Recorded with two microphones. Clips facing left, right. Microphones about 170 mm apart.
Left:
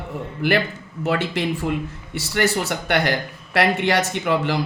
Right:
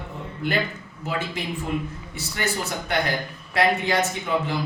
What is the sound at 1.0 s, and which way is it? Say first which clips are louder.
A man's voice: left 7 dB; 75° left (ahead or behind).